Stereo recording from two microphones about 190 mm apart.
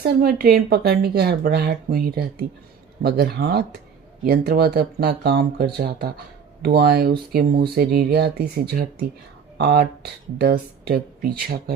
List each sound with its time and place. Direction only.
0.0 s speech: 55° right (ahead or behind)